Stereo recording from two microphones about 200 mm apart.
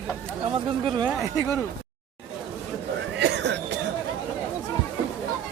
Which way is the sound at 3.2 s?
60° right (ahead or behind).